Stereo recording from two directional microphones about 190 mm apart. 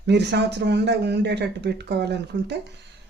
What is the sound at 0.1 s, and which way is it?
Speech, 65° right (ahead or behind).